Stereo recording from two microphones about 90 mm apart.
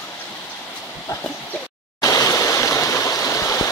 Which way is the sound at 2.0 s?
35° left (ahead or behind).